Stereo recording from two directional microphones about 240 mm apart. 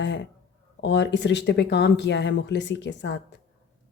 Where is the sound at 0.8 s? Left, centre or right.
Left.